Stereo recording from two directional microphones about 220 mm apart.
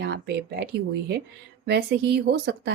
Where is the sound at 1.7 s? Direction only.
45° right (ahead or behind).